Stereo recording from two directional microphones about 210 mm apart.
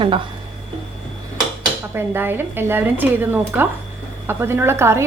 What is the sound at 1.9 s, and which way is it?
A woman's voice, 10° right (ahead or behind).